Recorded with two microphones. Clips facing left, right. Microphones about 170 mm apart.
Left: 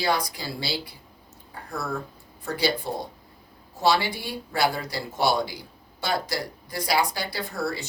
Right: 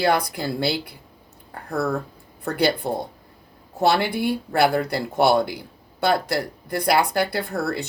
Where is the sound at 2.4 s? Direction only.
60° right (ahead or behind).